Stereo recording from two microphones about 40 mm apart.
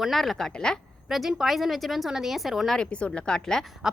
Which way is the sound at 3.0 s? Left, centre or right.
Centre.